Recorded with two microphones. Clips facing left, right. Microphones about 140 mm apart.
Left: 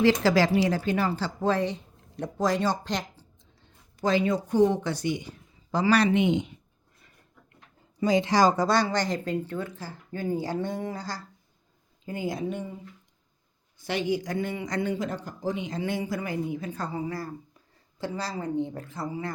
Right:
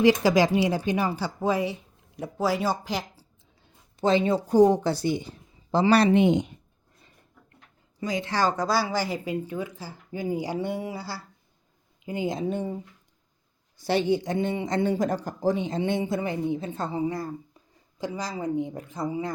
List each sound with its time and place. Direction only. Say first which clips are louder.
0.0 s a woman's voice: right 2 dB; 15° right (ahead or behind)
3.9 s speech: right 2 dB; 25° right (ahead or behind)
8.0 s speech: left 6 dB; 25° left (ahead or behind)
8.3 s speech: left 3 dB; 10° left (ahead or behind)
8.5 s a woman's voice: left 1 dB; 5° right (ahead or behind)
12.0 s speech: right 3 dB; 20° right (ahead or behind)
13.8 s speech: right 4 dB; 30° right (ahead or behind)
14.9 s a woman's voice: right 5 dB; 40° right (ahead or behind); by 19.3 s 20° right (ahead or behind)